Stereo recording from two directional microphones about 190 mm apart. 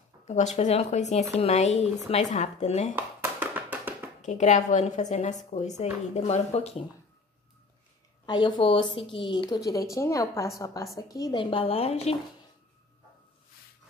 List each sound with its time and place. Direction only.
0.2 s a sound: 40° left (ahead or behind)
0.6 s speech: 35° left (ahead or behind)
3.0 s music: 10° right (ahead or behind)
4.2 s speech: 40° left (ahead or behind)
8.3 s a woman's voice: 25° left (ahead or behind)